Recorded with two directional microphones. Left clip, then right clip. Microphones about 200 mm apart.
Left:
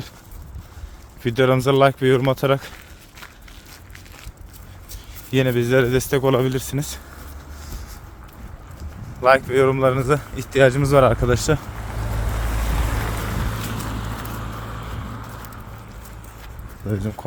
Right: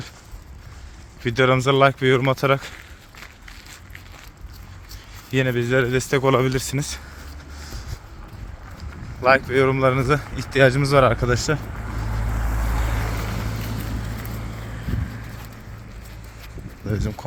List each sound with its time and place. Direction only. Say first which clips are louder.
1.2 s speech: even; 30° left (ahead or behind)
5.3 s speech: left 2 dB; 35° left (ahead or behind); by 6.8 s 10° left (ahead or behind)
8.8 s speech: left 2 dB; 35° left (ahead or behind)
12.1 s vehicle: left 3 dB; 85° left; by 13.4 s 55° left (ahead or behind)
13.9 s vehicle: left 3 dB; 5° left (ahead or behind)
16.4 s a sound: even; 20° left (ahead or behind)